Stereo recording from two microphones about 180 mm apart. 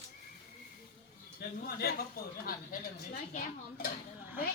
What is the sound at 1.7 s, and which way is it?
Speech, 60° left (ahead or behind).